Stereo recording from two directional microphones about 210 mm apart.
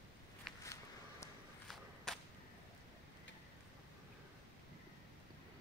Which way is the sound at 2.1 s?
Centre (ahead or behind).